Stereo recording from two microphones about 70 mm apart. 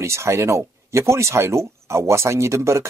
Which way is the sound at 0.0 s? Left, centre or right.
Right.